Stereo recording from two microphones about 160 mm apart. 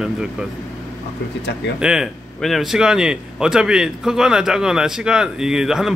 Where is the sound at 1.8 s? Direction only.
5° right (ahead or behind).